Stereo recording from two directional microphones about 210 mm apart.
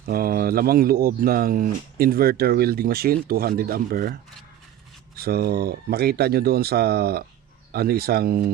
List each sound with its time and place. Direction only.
0.0 s speech: 45° right (ahead or behind)
5.1 s speech: 45° right (ahead or behind)